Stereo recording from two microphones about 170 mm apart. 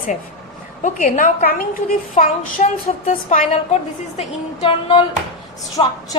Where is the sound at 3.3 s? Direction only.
40° left (ahead or behind).